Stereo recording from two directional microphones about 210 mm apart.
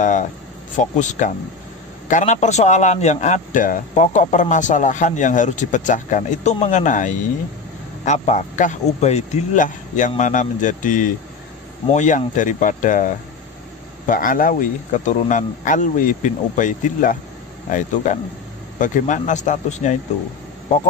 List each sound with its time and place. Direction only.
0.0 s a man's voice: 35° left (ahead or behind)